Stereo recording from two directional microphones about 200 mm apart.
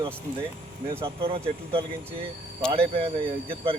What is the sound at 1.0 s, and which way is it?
Speech, 30° right (ahead or behind).